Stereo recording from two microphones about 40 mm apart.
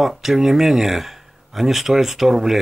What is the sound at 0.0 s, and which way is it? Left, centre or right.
Speech, centre.